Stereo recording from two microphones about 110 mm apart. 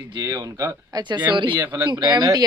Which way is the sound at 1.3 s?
45° right (ahead or behind).